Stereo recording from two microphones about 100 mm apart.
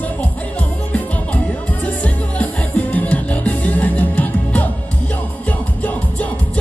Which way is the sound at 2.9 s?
15° left (ahead or behind).